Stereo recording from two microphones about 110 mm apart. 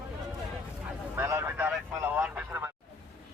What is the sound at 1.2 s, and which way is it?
A man's voice, 20° right (ahead or behind).